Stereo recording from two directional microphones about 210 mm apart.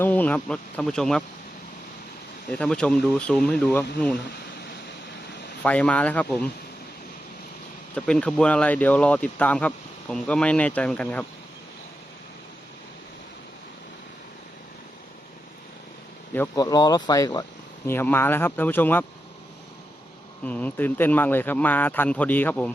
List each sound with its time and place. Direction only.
0.0 s speech: 10° left (ahead or behind)
2.5 s speech: 5° left (ahead or behind)
5.6 s speech: 5° left (ahead or behind)
7.9 s speech: 5° left (ahead or behind)
16.3 s speech: 15° left (ahead or behind)
20.4 s speech: 5° left (ahead or behind)